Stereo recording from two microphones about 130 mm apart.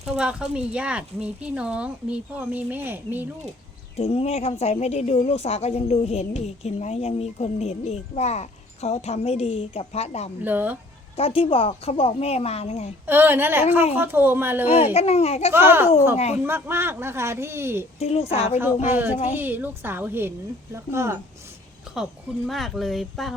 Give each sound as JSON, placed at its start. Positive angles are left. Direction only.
{"t": 0.0, "sound": "speech", "side_deg": -10}
{"t": 3.9, "sound": "a woman's voice", "side_deg": 55}
{"t": 10.4, "sound": "speech", "side_deg": -15}
{"t": 11.2, "sound": "speech", "side_deg": 45}
{"t": 13.1, "sound": "speech", "side_deg": -15}
{"t": 14.9, "sound": "speech", "side_deg": 55}
{"t": 15.5, "sound": "speech", "side_deg": -15}
{"t": 16.1, "sound": "a woman's voice", "side_deg": 55}
{"t": 16.5, "sound": "a man's voice", "side_deg": -15}
{"t": 18.0, "sound": "a woman's voice", "side_deg": 55}
{"t": 19.3, "sound": "a man's voice", "side_deg": -15}
{"t": 21.9, "sound": "a sound", "side_deg": -5}
{"t": 22.4, "sound": "speech", "side_deg": 0}